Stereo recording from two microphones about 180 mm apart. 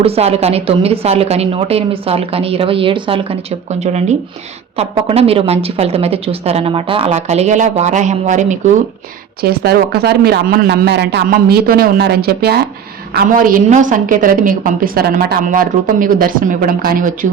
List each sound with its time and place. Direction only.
0.0 s speech: 35° right (ahead or behind)
9.4 s speech: 60° right (ahead or behind)
13.1 s a woman's voice: 50° right (ahead or behind)